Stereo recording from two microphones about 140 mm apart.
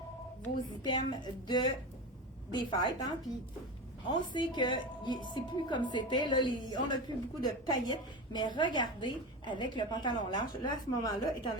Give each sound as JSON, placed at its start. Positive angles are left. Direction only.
{"t": 0.9, "sound": "a woman's voice", "side_deg": 30}